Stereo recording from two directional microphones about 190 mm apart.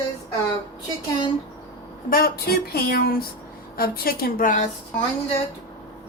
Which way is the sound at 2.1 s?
50° left (ahead or behind).